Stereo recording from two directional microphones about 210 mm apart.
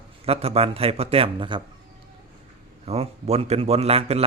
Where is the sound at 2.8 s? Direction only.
30° right (ahead or behind).